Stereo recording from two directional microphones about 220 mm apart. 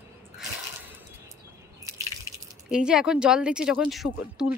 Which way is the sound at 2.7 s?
5° right (ahead or behind).